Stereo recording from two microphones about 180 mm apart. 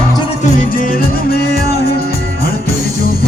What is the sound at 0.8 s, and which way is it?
Music, 55° left (ahead or behind).